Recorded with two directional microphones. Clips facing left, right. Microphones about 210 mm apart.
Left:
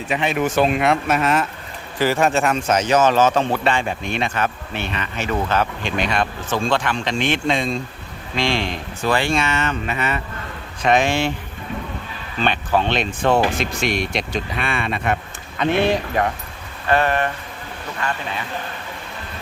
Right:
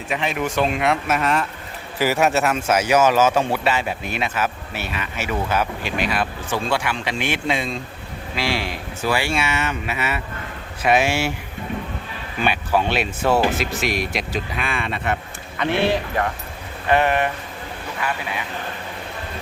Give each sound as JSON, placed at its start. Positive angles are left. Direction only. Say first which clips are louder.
{"t": 0.1, "sound": "speech", "louder": "left 3 dB", "side_deg": 0}
{"t": 2.0, "sound": "speech", "louder": "left 1 dB", "side_deg": -10}
{"t": 12.4, "sound": "speech", "louder": "left 1 dB", "side_deg": -10}
{"t": 16.9, "sound": "speech", "louder": "even", "side_deg": -15}